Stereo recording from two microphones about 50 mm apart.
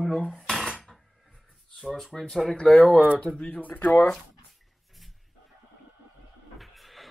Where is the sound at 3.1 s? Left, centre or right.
Left.